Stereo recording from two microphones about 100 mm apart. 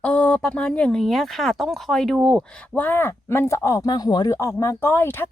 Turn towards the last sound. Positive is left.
turn(degrees=20)  # may be behind; listen again after turning